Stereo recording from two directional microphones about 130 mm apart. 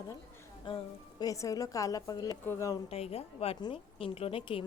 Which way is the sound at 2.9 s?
50° left (ahead or behind).